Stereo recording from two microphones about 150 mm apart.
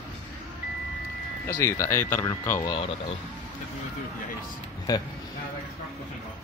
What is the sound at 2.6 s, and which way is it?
Speech, 35° left (ahead or behind).